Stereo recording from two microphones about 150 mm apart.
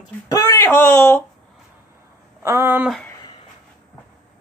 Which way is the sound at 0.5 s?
15° left (ahead or behind).